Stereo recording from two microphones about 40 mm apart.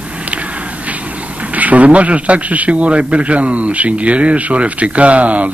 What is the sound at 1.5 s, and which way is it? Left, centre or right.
A man's voice, right.